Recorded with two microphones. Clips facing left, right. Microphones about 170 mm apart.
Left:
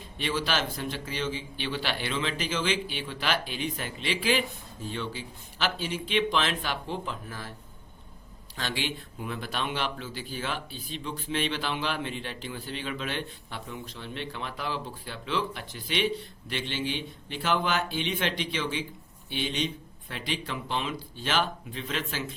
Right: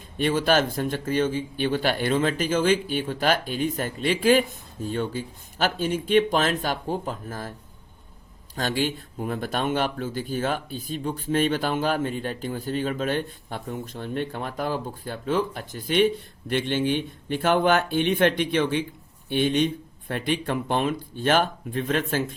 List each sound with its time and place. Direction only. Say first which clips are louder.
0.2 s speech: right 8 dB; 50° right (ahead or behind)
8.5 s speech: right 7 dB; 45° right (ahead or behind)